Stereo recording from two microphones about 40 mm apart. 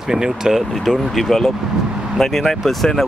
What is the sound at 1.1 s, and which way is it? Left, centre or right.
Speech, centre.